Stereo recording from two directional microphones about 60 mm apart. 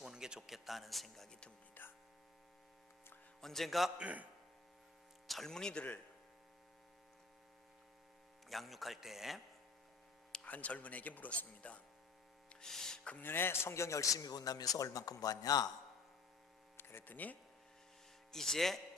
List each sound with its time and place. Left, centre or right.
0.0 s speech: centre
1.8 s hum: left
3.4 s a man's voice: centre
3.9 s a man's voice: right
5.3 s speech: centre
8.4 s a man's voice: centre
10.4 s speech: left
12.5 s a sound: centre
13.2 s a man's voice: left
16.7 s speech: left
18.3 s speech: centre